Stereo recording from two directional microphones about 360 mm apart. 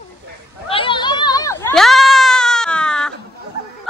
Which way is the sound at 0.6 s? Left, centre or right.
Centre.